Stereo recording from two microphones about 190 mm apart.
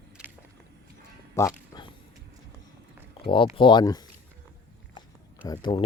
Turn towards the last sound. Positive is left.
turn(degrees=25)  # may be behind; listen again after turning